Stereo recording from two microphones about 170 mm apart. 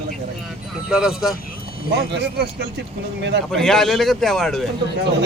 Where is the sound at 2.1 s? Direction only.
90° right.